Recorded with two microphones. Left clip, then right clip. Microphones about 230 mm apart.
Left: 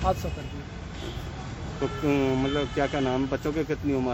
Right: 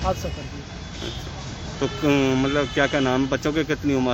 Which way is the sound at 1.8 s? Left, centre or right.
Right.